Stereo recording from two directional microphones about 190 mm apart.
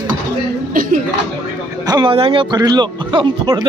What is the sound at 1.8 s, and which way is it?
A man's voice, 25° right (ahead or behind).